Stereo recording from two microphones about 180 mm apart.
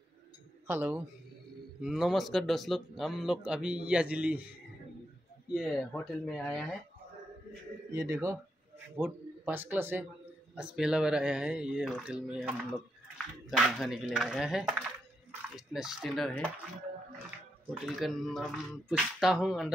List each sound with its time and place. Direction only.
0.7 s speech: 10° right (ahead or behind)
5.5 s speech: centre (ahead or behind)
7.9 s speech: 20° right (ahead or behind); by 16.4 s centre (ahead or behind)
17.6 s speech: centre (ahead or behind)